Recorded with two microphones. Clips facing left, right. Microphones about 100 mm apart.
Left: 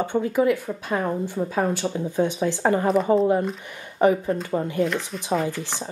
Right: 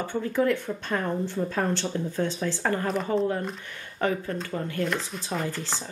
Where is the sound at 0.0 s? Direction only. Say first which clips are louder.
Left 4 dB; 15° left (ahead or behind).